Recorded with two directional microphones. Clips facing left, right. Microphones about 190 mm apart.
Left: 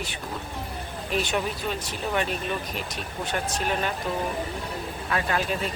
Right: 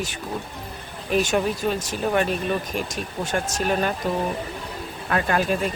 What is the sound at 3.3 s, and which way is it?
Speech, 45° right (ahead or behind).